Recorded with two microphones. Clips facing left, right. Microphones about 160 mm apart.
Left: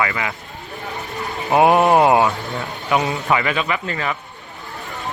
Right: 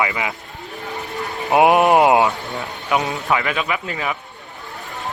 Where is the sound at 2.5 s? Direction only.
Centre (ahead or behind).